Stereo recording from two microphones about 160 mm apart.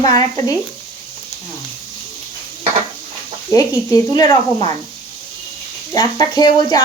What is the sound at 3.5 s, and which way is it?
Speech, 20° left (ahead or behind).